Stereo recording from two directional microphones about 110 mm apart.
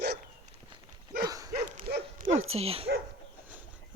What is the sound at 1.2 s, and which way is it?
Dog, 35° right (ahead or behind).